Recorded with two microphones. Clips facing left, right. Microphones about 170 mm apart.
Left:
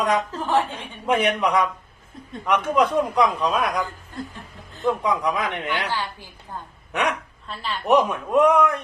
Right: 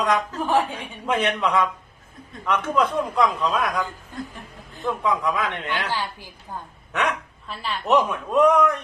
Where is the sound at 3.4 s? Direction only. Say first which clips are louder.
Left 1 dB; 15° left (ahead or behind).